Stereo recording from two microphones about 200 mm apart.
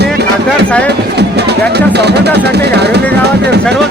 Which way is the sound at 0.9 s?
55° right (ahead or behind).